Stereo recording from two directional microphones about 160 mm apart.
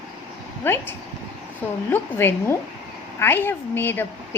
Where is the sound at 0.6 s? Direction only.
15° left (ahead or behind).